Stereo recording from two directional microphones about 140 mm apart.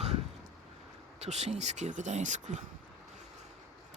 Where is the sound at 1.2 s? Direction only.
50° right (ahead or behind).